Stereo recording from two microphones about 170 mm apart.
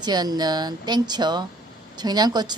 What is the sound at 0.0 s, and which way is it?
A woman's voice, 25° right (ahead or behind).